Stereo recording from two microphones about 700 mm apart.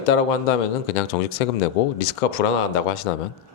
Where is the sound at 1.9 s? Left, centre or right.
Left.